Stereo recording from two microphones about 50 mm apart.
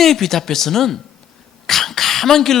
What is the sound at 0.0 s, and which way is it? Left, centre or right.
Speech, centre.